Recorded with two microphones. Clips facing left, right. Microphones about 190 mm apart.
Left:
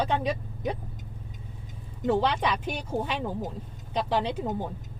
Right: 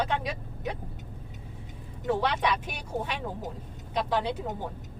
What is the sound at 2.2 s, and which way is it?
Speech, 30° left (ahead or behind).